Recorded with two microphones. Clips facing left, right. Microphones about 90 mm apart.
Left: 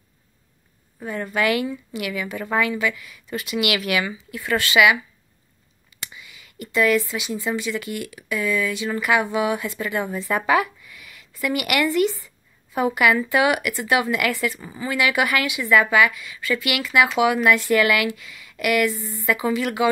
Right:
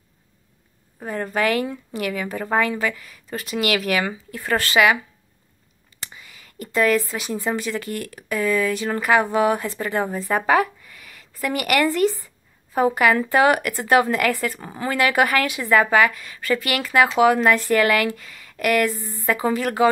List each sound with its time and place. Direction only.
0.9 s a woman's voice: 40° right (ahead or behind)
5.9 s a woman's voice: 40° right (ahead or behind)